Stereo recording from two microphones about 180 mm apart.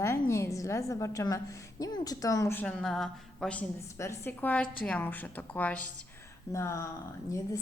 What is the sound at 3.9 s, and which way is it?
A woman's voice, 15° left (ahead or behind).